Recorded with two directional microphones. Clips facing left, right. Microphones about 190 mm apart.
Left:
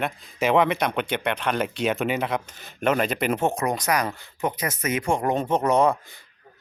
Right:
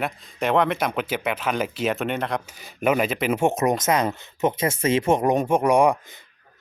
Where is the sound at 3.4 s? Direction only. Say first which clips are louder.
Right 3 dB; 20° right (ahead or behind).